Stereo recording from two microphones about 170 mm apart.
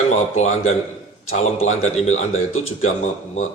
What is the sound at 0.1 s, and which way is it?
A man's voice, 40° left (ahead or behind).